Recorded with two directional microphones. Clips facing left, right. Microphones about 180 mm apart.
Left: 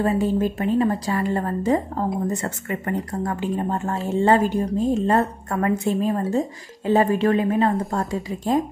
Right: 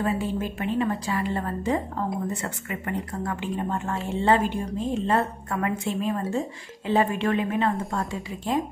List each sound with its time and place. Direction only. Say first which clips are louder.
0.0 s speech: left 6 dB; 40° left (ahead or behind)